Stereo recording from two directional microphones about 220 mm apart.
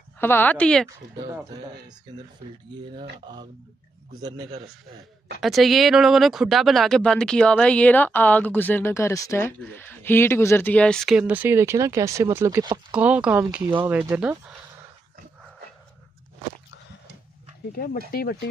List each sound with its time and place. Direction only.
0.2 s speech: 10° left (ahead or behind)
0.8 s speech: 15° right (ahead or behind)
2.8 s speech: 20° right (ahead or behind)
5.4 s speech: centre (ahead or behind); by 12.8 s 15° right (ahead or behind)
12.9 s speech: 5° right (ahead or behind)
18.1 s speech: 45° left (ahead or behind)